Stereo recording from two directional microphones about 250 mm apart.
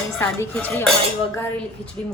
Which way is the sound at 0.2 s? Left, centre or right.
Centre.